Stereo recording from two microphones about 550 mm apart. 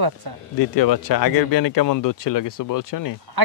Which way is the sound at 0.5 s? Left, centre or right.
Left.